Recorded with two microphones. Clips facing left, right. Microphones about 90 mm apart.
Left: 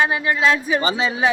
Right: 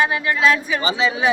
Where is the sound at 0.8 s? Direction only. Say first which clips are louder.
Even; 40° left (ahead or behind).